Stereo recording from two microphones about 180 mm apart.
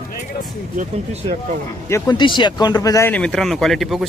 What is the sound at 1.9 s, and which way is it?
Speech, 25° left (ahead or behind).